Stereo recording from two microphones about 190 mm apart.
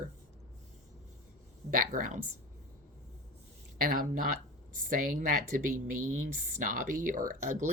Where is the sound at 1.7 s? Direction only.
40° right (ahead or behind).